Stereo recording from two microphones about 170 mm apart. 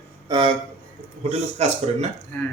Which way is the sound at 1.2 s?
40° right (ahead or behind).